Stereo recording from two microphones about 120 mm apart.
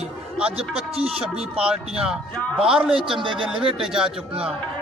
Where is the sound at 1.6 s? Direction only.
10° right (ahead or behind).